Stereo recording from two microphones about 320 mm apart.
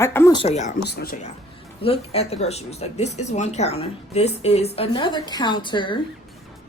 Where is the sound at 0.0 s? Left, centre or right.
Centre.